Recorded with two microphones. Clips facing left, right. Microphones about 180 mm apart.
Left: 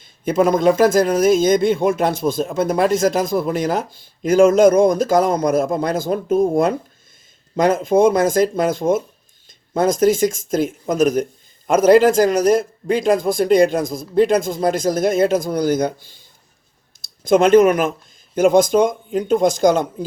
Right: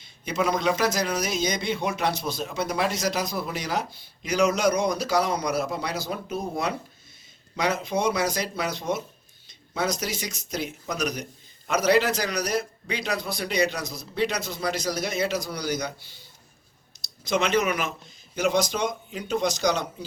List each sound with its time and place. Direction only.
0.0 s a man's voice: 50° left (ahead or behind)
17.2 s a man's voice: 50° left (ahead or behind)